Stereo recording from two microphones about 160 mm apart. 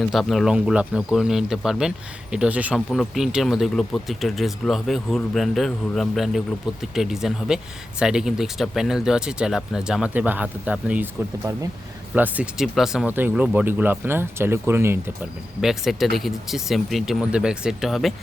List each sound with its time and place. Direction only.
0.1 s speech: centre (ahead or behind)
15.6 s speech: centre (ahead or behind)